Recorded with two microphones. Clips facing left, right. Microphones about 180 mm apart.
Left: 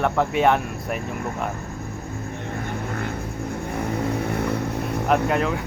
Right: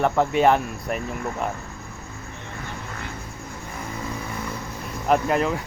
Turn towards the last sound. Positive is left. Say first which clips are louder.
# even
turn(degrees=0)  # may be behind; listen again after turning